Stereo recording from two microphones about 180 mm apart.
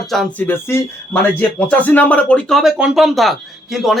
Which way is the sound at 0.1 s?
5° left (ahead or behind).